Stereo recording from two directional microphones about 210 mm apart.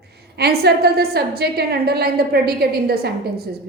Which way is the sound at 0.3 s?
50° right (ahead or behind).